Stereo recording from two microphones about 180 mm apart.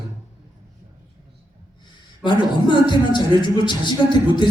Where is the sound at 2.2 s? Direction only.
25° left (ahead or behind).